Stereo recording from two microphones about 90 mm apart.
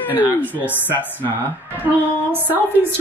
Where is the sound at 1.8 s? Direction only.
20° right (ahead or behind).